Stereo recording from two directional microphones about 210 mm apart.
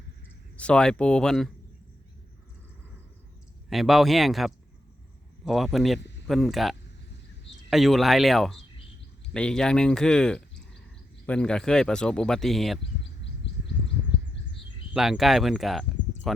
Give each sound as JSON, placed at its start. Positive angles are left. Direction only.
{"t": 0.5, "sound": "speech", "side_deg": 5}
{"t": 3.7, "sound": "speech", "side_deg": 0}
{"t": 14.9, "sound": "speech", "side_deg": 0}